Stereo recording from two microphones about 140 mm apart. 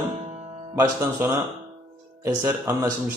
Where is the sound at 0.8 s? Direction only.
15° right (ahead or behind).